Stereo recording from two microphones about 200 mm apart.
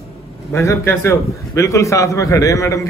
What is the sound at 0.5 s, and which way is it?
A man's voice, 15° left (ahead or behind).